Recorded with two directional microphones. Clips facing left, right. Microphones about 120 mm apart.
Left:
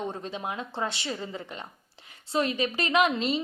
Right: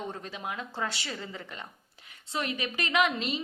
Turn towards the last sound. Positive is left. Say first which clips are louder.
# left 3 dB
turn(degrees=30)  # may be behind; listen again after turning